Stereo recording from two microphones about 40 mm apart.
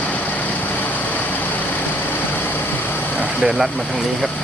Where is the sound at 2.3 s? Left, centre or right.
Left.